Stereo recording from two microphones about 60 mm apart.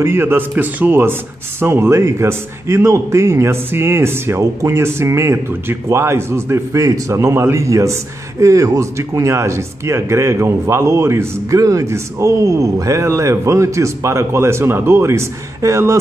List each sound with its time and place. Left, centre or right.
0.0 s a man's voice: right
1.8 s a man's voice: right
11.6 s speech: right
11.9 s speech: right